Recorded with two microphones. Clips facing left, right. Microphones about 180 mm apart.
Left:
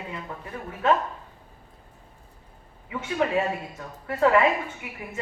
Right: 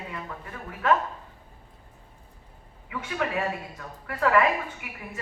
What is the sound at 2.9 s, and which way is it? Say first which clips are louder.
A woman's voice: left 4 dB; 25° left (ahead or behind).